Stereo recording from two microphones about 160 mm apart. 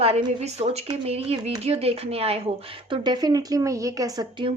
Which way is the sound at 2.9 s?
25° right (ahead or behind).